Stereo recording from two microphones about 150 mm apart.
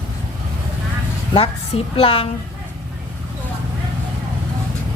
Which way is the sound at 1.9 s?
40° left (ahead or behind).